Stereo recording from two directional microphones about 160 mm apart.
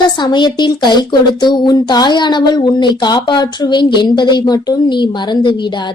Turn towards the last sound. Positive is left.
turn(degrees=30)  # may be behind; listen again after turning